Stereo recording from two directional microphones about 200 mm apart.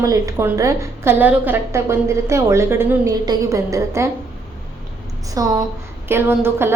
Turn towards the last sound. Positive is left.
turn(degrees=-10)  # may be behind; listen again after turning